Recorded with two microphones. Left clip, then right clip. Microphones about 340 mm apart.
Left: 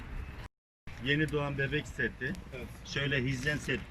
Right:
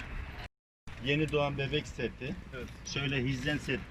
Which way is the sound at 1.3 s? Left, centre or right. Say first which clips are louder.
Right 2 dB; centre.